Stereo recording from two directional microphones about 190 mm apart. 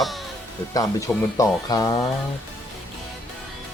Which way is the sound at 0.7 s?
15° left (ahead or behind).